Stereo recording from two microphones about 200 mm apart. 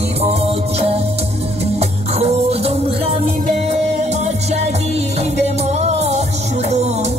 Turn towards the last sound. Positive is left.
turn(degrees=-35)  # may be behind; listen again after turning